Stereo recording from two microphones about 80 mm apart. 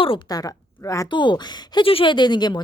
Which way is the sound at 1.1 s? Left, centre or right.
Left.